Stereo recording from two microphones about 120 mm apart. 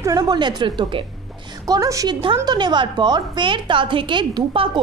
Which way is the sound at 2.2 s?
40° right (ahead or behind).